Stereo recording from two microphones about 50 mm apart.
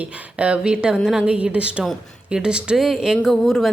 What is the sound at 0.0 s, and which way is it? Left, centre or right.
A woman's voice, right.